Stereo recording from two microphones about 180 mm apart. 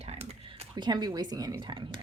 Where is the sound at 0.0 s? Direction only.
35° right (ahead or behind).